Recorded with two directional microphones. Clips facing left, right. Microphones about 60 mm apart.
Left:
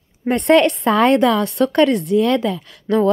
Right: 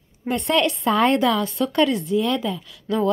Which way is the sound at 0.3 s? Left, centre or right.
Left.